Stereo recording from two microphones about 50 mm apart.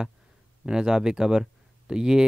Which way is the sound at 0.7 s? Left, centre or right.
Centre.